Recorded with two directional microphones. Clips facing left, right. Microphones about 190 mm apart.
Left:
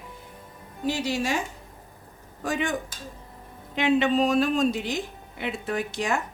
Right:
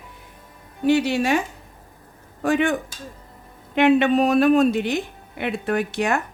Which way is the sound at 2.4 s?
60° right (ahead or behind).